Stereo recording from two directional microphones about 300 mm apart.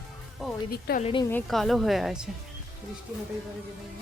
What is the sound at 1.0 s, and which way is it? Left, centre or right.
A woman's voice, centre.